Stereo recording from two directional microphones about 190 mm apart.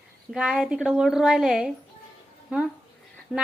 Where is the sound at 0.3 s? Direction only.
5° right (ahead or behind).